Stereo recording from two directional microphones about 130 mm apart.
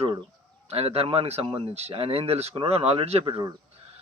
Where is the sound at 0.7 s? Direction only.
50° right (ahead or behind).